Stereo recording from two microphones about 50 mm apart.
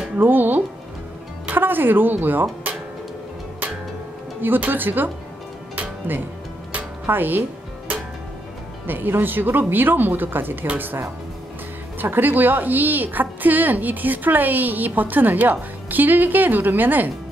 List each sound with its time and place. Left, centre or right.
0.2 s a woman's voice: right
4.4 s a woman's voice: right
8.8 s a woman's voice: right